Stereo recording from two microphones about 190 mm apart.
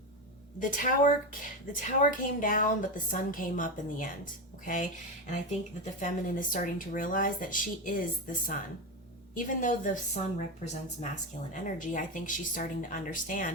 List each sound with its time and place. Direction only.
0.6 s speech: 45° left (ahead or behind)